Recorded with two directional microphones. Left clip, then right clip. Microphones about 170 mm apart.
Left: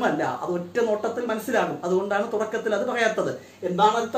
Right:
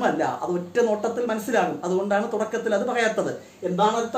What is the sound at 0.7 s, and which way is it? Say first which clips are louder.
Speech: right 2 dB; 25° right (ahead or behind).